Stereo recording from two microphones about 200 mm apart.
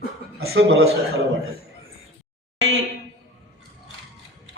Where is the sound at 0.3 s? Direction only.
90° right.